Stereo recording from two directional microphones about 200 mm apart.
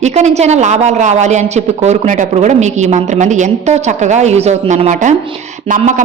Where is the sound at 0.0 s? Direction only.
35° right (ahead or behind).